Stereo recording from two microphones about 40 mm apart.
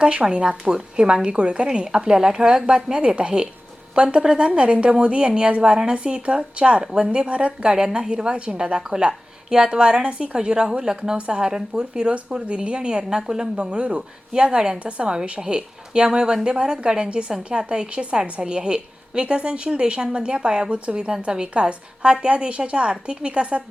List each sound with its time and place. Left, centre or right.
0.0 s a woman's voice: right
7.2 s a woman's voice: right